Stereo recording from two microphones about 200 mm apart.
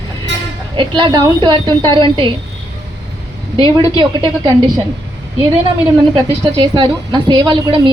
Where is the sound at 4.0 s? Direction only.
20° right (ahead or behind).